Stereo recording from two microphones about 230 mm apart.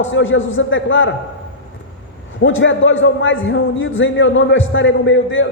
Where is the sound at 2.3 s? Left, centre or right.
Left.